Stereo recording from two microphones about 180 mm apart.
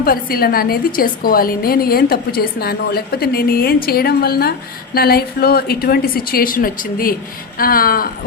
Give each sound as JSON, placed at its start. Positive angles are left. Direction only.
{"t": 0.0, "sound": "a woman's voice", "side_deg": 55}